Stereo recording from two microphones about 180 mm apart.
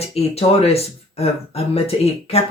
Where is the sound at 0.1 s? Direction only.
35° left (ahead or behind).